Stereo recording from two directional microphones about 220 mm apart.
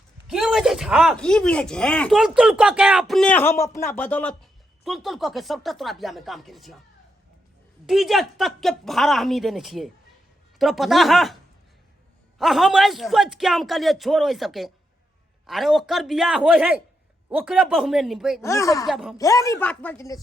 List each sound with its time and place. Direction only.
0.3 s speech: 5° right (ahead or behind)
7.9 s speech: centre (ahead or behind)
12.4 s speech: centre (ahead or behind)
18.4 s speech: 15° left (ahead or behind)
18.9 s speech: centre (ahead or behind)
19.1 s speech: 15° left (ahead or behind)